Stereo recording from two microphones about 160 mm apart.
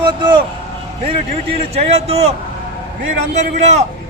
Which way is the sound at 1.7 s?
40° right (ahead or behind).